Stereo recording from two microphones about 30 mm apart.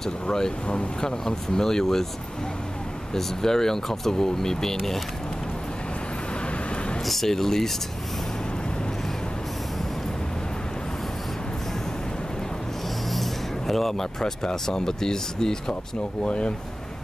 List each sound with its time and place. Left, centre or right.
0.3 s speech: left
3.2 s speech: centre
7.1 s speech: centre
13.1 s vehicle: centre
14.4 s speech: centre
16.3 s speech: left